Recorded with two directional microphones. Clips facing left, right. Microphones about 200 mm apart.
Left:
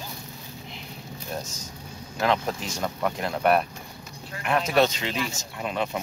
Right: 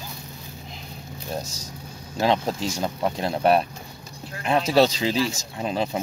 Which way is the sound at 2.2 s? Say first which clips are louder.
Right 3 dB; 30° right (ahead or behind).